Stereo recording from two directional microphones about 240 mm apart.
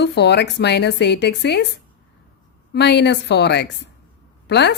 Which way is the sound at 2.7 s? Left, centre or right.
Left.